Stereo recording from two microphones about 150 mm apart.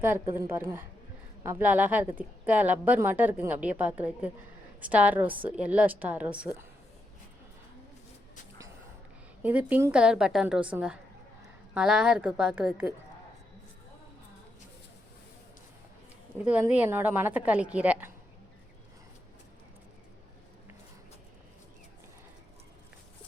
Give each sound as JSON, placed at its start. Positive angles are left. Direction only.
{"t": 0.0, "sound": "speech", "side_deg": -15}
{"t": 9.4, "sound": "speech", "side_deg": -10}
{"t": 16.4, "sound": "speech", "side_deg": -10}